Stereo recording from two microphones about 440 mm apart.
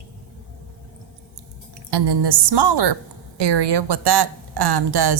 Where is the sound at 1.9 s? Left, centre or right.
Right.